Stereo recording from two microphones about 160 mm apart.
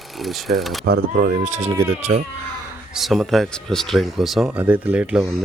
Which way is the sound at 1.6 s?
45° right (ahead or behind).